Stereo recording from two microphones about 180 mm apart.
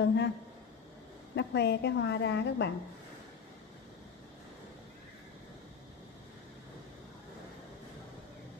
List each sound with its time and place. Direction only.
0.0 s a woman's voice: 70° left (ahead or behind)
1.3 s a woman's voice: 70° left (ahead or behind)